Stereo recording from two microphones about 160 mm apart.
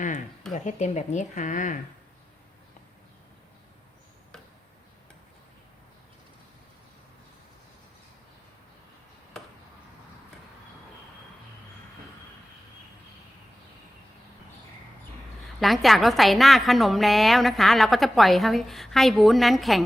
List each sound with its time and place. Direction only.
0.5 s speech: 45° left (ahead or behind)
15.6 s a woman's voice: centre (ahead or behind)